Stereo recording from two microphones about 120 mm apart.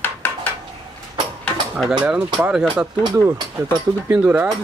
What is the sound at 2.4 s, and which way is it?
Speech, 5° right (ahead or behind).